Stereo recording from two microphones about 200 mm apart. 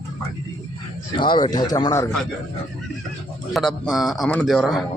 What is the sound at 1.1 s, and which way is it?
Speech, 25° left (ahead or behind).